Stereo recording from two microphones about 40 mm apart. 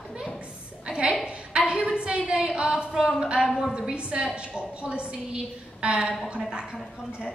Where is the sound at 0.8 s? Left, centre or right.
Centre.